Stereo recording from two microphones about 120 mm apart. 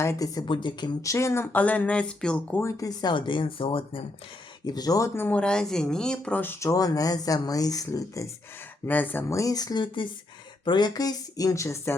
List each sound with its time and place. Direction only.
0.0 s speech: 25° left (ahead or behind)
0.4 s speech: 40° left (ahead or behind)
1.0 s speech: 25° left (ahead or behind); by 2.6 s 10° left (ahead or behind)
2.6 s speech: 25° left (ahead or behind); by 4.0 s 50° left (ahead or behind)
4.6 s speech: 35° left (ahead or behind)
8.9 s speech: 15° left (ahead or behind)